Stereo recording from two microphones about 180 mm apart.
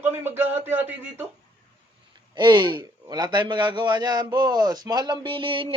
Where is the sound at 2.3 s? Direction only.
25° right (ahead or behind).